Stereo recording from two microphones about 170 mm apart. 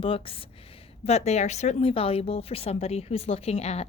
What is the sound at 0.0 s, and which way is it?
Speech, 35° left (ahead or behind).